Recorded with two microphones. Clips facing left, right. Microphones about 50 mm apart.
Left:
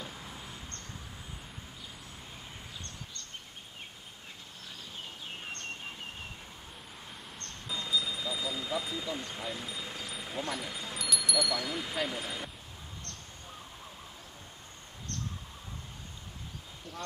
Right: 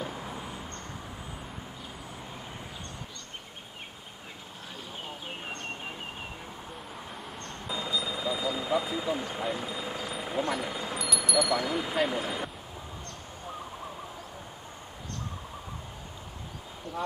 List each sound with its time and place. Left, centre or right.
0.0 s vehicle: right
7.3 s helicopter: centre
9.2 s speech: centre
10.2 s vehicle: centre
10.7 s speech: centre